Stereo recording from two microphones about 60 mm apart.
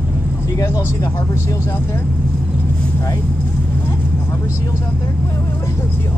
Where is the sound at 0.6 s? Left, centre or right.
Left.